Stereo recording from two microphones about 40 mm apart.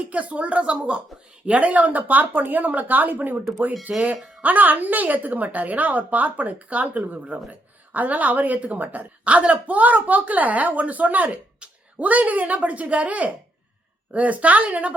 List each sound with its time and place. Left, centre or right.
0.0 s a woman's voice: right
11.6 s a sound: right
11.9 s speech: right